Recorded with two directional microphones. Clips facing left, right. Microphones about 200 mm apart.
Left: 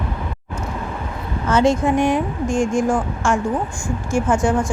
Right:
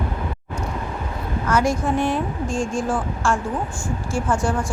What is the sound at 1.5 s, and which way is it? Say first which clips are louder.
A woman's voice: left 4 dB; 25° left (ahead or behind).